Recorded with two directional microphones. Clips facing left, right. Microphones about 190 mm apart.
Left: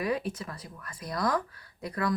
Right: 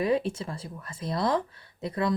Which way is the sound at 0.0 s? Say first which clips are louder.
Right 5 dB; 25° right (ahead or behind).